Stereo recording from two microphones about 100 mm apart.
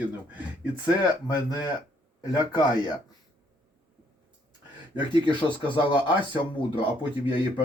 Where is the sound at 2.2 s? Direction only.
40° left (ahead or behind).